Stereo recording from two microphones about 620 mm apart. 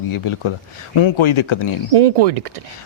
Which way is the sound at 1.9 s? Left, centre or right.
Right.